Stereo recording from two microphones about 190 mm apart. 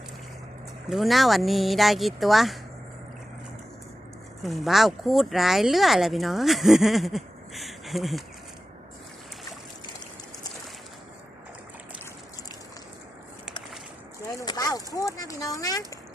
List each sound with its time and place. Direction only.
0.9 s speech: centre (ahead or behind)
4.4 s speech: centre (ahead or behind)
14.3 s a sound: 20° left (ahead or behind)